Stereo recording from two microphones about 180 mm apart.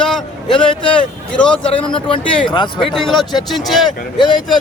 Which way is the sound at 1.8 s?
30° left (ahead or behind).